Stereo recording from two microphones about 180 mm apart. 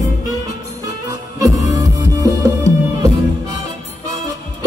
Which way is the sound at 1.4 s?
20° right (ahead or behind).